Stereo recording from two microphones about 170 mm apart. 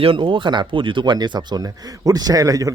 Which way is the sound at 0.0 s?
30° right (ahead or behind).